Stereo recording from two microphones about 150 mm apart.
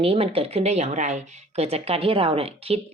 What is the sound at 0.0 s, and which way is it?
Speech, 40° right (ahead or behind).